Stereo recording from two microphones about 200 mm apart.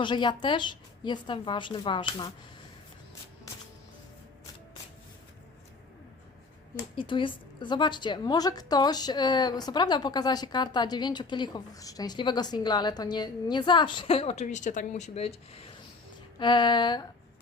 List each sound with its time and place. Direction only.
0.0 s a woman's voice: 25° left (ahead or behind)
6.9 s a woman's voice: 25° left (ahead or behind)